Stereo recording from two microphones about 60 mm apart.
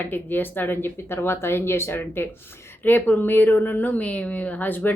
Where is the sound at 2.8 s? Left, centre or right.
Left.